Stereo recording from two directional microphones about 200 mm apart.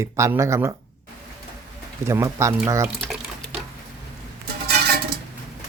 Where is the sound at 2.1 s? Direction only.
15° right (ahead or behind).